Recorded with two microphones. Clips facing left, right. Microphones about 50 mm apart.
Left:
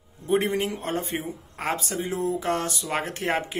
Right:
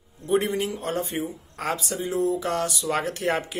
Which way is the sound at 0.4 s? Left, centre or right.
Left.